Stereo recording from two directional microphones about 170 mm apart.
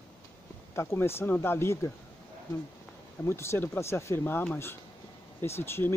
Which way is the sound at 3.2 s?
15° left (ahead or behind).